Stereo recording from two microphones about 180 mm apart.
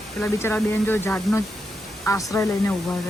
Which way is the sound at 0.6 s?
10° left (ahead or behind).